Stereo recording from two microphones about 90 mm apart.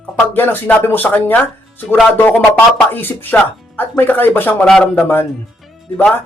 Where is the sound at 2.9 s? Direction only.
20° left (ahead or behind).